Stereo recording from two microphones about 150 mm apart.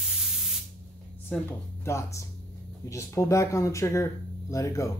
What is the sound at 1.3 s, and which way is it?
Speech, 10° left (ahead or behind).